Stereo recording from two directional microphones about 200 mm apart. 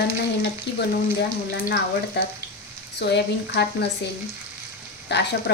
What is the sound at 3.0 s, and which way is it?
Speech, 55° left (ahead or behind).